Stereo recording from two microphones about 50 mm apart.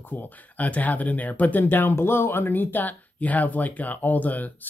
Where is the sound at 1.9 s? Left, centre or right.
Left.